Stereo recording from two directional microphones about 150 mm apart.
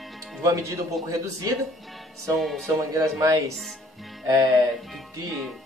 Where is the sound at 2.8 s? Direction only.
20° right (ahead or behind).